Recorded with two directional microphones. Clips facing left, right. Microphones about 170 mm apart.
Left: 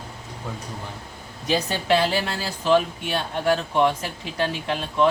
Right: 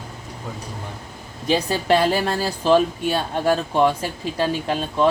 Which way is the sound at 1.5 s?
45° right (ahead or behind).